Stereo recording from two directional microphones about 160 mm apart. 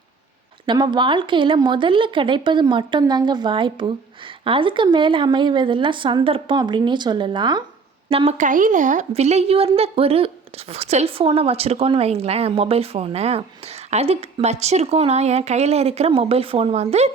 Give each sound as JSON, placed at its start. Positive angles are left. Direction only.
{"t": 0.6, "sound": "a woman's voice", "side_deg": -30}
{"t": 8.4, "sound": "a woman's voice", "side_deg": -55}